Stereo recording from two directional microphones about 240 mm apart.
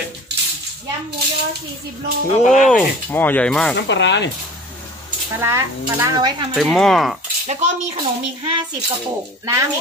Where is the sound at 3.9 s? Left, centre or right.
Left.